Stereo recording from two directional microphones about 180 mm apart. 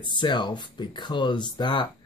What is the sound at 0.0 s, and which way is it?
Speech, 25° left (ahead or behind).